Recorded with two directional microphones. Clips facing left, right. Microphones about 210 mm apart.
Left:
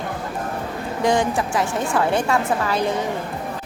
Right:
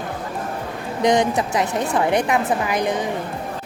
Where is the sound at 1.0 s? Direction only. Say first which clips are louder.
Right 2 dB; 20° right (ahead or behind).